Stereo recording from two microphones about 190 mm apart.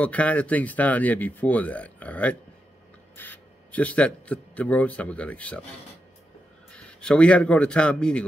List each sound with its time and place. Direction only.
0.0 s speech: 5° left (ahead or behind)
6.7 s a man's voice: 5° left (ahead or behind)